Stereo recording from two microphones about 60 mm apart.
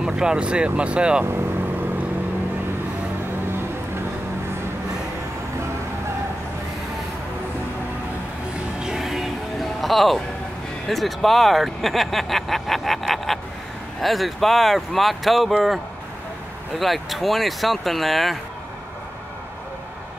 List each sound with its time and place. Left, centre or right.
0.0 s speech: centre
1.2 s vehicle: right
8.8 s music: centre
10.9 s speech: centre